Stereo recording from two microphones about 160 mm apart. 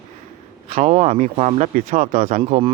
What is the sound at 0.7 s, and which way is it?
Speech, 45° right (ahead or behind).